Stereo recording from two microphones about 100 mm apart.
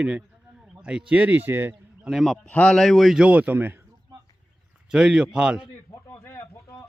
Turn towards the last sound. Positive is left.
turn(degrees=25)  # may be behind; listen again after turning